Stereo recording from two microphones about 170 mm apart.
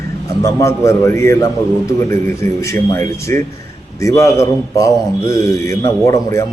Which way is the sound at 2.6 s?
15° left (ahead or behind).